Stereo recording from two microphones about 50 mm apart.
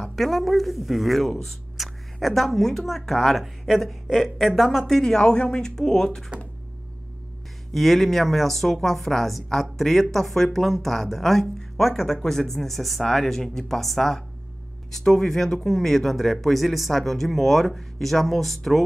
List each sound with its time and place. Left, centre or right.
0.0 s speech: centre
7.7 s speech: centre